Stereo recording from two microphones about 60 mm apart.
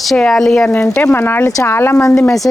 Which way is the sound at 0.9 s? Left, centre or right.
Left.